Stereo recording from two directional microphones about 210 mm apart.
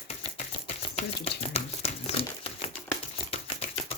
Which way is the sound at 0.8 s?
30° left (ahead or behind).